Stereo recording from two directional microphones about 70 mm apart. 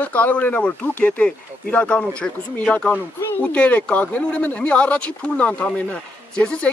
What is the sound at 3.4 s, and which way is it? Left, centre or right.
Speech, left.